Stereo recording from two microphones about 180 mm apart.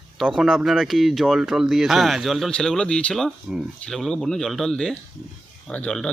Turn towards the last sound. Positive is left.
turn(degrees=5)  # may be behind; listen again after turning